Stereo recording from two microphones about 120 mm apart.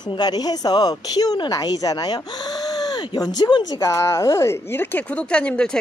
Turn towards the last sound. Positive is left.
turn(degrees=5)  # may be behind; listen again after turning